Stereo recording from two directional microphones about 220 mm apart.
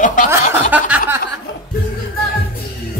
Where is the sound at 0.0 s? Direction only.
35° left (ahead or behind).